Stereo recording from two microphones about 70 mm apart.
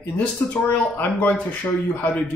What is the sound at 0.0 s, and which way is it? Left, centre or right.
Speech, left.